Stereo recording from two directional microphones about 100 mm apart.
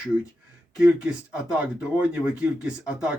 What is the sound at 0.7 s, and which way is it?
Speech, 10° right (ahead or behind).